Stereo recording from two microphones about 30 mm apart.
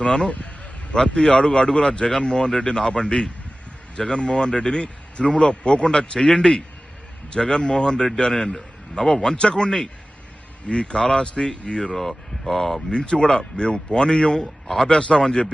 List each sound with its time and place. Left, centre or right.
0.0 s a man's voice: left
10.8 s speech: left
12.5 s speech: centre
12.9 s speech: left